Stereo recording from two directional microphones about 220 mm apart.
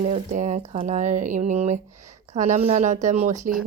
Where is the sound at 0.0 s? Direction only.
35° right (ahead or behind).